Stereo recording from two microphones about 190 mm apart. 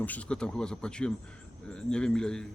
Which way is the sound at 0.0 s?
5° left (ahead or behind).